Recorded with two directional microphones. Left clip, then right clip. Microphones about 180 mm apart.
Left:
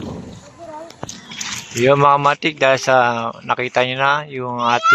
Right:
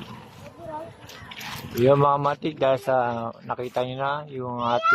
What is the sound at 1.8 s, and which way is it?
Speech, 15° left (ahead or behind).